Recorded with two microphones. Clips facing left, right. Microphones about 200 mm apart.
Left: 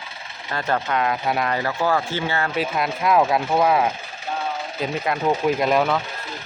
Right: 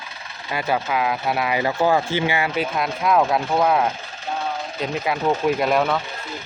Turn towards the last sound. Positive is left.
turn(degrees=0)  # may be behind; listen again after turning